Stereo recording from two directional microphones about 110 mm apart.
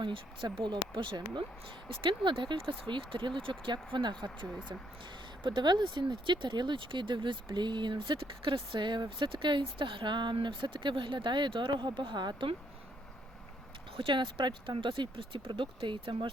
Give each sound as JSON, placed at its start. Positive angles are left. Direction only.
{"t": 0.0, "sound": "speech", "side_deg": -50}
{"t": 13.9, "sound": "speech", "side_deg": -50}